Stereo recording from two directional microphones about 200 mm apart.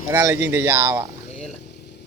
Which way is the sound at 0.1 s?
10° right (ahead or behind).